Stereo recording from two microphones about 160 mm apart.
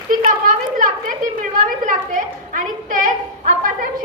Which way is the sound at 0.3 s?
55° right (ahead or behind).